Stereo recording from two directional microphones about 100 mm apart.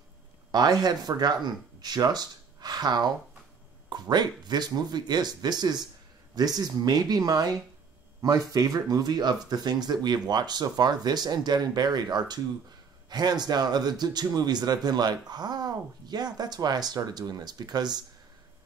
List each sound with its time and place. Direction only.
0.5 s speech: 40° right (ahead or behind)